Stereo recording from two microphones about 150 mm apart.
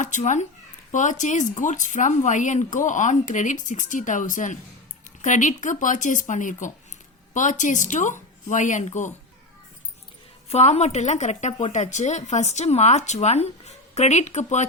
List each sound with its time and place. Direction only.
0.0 s speech: 55° left (ahead or behind)
10.5 s a woman's voice: 45° left (ahead or behind)